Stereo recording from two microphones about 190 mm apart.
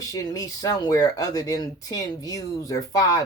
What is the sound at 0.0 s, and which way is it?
Speech, 20° left (ahead or behind).